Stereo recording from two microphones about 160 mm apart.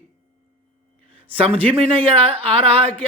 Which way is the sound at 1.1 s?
35° right (ahead or behind).